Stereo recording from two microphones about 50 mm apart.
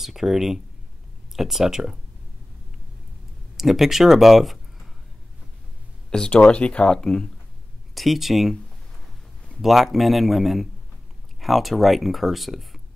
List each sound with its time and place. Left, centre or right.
0.0 s speech: centre
3.5 s speech: centre
6.0 s speech: centre
7.9 s speech: centre
9.6 s speech: centre